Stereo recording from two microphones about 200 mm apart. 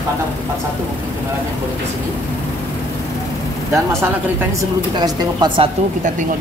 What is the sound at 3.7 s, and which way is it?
Speech, 15° right (ahead or behind).